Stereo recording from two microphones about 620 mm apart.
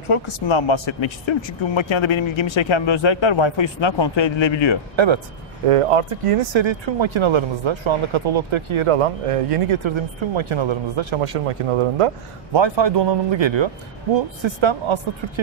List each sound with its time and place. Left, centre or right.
0.1 s speech: left
4.9 s speech: right
5.7 s speech: right
12.5 s speech: right